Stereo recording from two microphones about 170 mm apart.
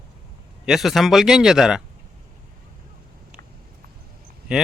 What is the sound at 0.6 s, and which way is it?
Speech, centre (ahead or behind).